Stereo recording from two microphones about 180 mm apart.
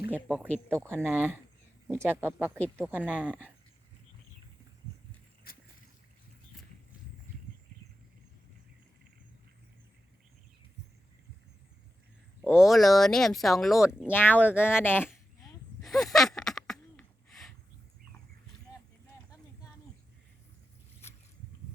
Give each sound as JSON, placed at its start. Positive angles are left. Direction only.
{"t": 0.1, "sound": "speech", "side_deg": -10}
{"t": 5.5, "sound": "boat", "side_deg": 55}
{"t": 12.5, "sound": "speech", "side_deg": 0}
{"t": 14.1, "sound": "speech", "side_deg": 10}
{"t": 15.8, "sound": "a sound", "side_deg": 0}